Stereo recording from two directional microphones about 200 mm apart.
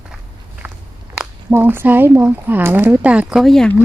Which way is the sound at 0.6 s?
10° right (ahead or behind).